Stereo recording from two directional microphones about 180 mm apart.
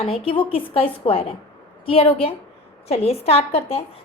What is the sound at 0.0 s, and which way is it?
A woman's voice, 30° left (ahead or behind).